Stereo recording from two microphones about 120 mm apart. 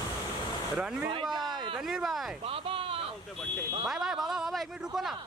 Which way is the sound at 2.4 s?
50° right (ahead or behind).